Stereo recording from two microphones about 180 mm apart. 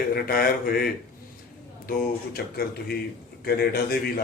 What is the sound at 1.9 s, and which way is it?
Speech, 55° left (ahead or behind).